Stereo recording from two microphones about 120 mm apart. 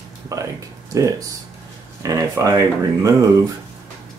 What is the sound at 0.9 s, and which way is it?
Speech, 30° right (ahead or behind).